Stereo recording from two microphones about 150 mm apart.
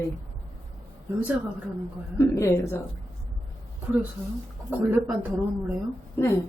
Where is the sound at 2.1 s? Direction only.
20° left (ahead or behind).